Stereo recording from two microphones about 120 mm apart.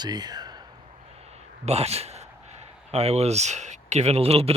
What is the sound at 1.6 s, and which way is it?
Speech, 60° right (ahead or behind).